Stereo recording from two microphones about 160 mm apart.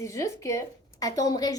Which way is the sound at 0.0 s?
20° left (ahead or behind).